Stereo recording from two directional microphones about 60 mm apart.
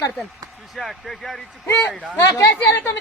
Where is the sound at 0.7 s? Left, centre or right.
Centre.